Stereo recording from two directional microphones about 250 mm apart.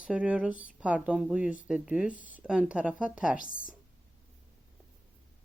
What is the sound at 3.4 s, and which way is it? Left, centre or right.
Speech, left.